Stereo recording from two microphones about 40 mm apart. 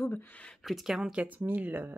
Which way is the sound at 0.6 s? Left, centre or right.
Centre.